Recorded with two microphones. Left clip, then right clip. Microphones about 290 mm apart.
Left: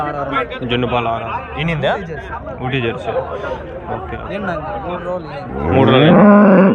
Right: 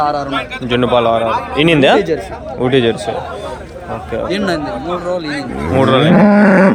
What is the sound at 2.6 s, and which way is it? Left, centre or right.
Speech, right.